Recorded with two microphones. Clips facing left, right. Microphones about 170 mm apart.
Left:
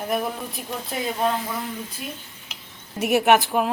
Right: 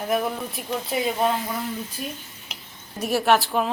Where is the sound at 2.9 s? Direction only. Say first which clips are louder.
Left 2 dB; 20° left (ahead or behind).